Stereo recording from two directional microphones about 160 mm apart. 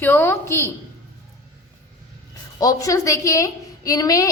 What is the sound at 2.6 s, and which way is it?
A woman's voice, 20° left (ahead or behind).